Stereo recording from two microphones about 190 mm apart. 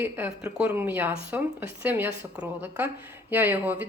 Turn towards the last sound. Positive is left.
turn(degrees=-10)  # may be behind; listen again after turning